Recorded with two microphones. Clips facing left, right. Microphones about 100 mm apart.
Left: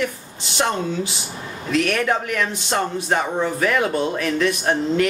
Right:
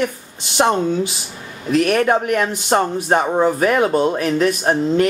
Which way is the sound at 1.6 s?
35° right (ahead or behind).